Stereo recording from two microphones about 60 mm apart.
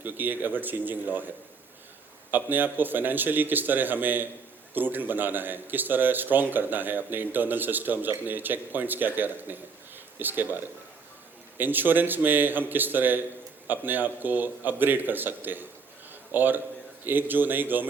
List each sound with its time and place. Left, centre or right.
0.0 s a man's voice: right
2.3 s a man's voice: right